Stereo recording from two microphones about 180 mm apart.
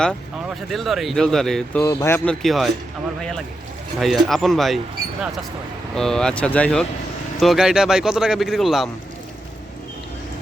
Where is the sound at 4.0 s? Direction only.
Centre (ahead or behind).